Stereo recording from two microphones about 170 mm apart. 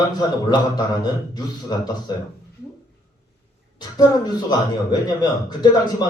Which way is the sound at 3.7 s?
25° left (ahead or behind).